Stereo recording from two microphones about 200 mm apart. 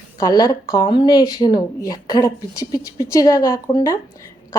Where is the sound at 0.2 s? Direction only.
20° left (ahead or behind).